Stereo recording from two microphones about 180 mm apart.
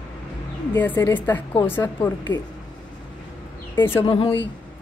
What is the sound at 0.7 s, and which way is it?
A woman's voice, 10° left (ahead or behind).